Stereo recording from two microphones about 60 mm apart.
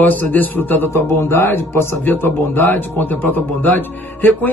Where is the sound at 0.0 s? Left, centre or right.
Left.